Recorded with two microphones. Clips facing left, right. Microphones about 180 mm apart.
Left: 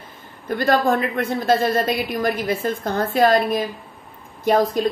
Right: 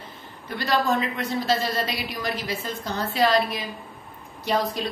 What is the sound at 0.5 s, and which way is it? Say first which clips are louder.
A woman's voice: left 6 dB; 50° left (ahead or behind).